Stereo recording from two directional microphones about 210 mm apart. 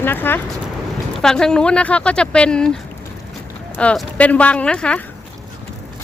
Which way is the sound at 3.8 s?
5° left (ahead or behind).